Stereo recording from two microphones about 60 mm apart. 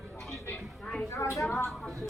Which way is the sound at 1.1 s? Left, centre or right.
Left.